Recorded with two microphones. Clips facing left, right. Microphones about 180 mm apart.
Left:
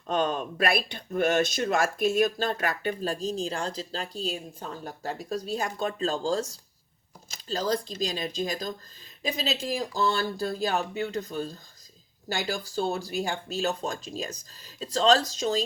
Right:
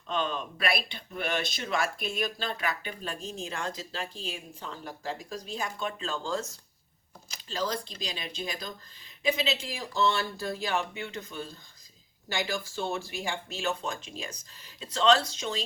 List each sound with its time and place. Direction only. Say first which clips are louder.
0.1 s speech: left 5 dB; 45° left (ahead or behind)
7.4 s speech: left 5 dB; 40° left (ahead or behind)